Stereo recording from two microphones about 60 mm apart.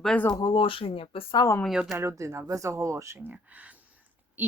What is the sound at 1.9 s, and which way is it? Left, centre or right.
Speech, right.